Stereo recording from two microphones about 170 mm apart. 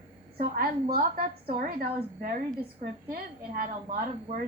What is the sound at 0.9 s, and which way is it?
A woman's voice, 60° right (ahead or behind).